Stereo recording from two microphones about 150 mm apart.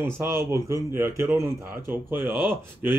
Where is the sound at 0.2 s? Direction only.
15° right (ahead or behind).